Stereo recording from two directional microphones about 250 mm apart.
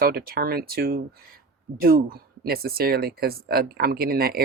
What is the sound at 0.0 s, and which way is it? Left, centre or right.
Speech, right.